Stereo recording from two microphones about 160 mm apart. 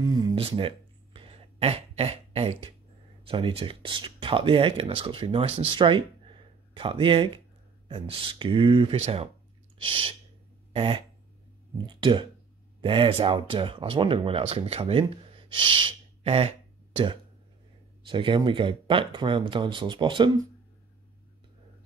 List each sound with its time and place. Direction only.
0.0 s a sound: 25° right (ahead or behind)
3.3 s speech: 35° right (ahead or behind)
9.8 s owl: 35° right (ahead or behind)
10.7 s dog: 35° right (ahead or behind)
11.8 s speech: 30° right (ahead or behind)